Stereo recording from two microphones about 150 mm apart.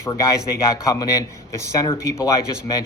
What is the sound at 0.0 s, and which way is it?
A man's voice, 20° left (ahead or behind).